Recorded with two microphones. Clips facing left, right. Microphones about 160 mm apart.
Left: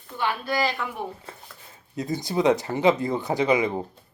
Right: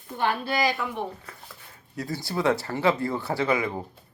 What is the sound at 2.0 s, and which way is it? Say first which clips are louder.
Speech: left 4 dB; 20° left (ahead or behind).